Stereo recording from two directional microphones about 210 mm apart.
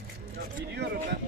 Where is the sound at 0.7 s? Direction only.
55° right (ahead or behind).